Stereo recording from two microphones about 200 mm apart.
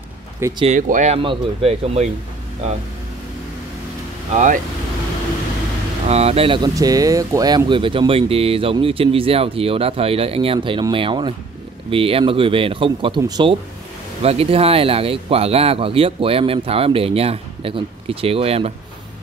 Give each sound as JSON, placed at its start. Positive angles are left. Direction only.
{"t": 0.6, "sound": "speech", "side_deg": -35}
{"t": 6.0, "sound": "speech", "side_deg": -30}